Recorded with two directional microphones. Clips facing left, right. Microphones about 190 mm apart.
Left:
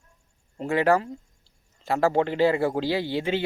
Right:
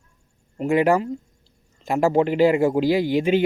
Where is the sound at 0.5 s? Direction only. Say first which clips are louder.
Right 3 dB; 15° right (ahead or behind).